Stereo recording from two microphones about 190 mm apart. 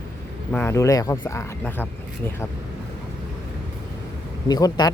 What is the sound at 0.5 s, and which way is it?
Speech, 15° left (ahead or behind).